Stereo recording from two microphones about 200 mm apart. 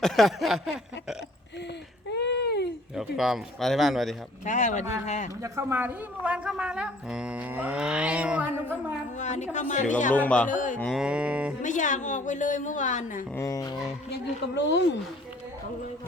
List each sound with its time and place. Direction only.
0.0 s a woman's voice: centre (ahead or behind)
2.1 s a sound: 55° left (ahead or behind)
2.9 s a woman's voice: centre (ahead or behind)
4.4 s a woman's voice: 35° left (ahead or behind)
5.4 s a woman's voice: 15° right (ahead or behind)
9.1 s a woman's voice: 35° left (ahead or behind)
10.2 s speech: 5° left (ahead or behind)
10.5 s a woman's voice: 40° left (ahead or behind)
10.8 s a woman's voice: centre (ahead or behind)
11.6 s a woman's voice: 40° left (ahead or behind)
13.3 s speech: 15° left (ahead or behind)
14.1 s a woman's voice: 60° left (ahead or behind)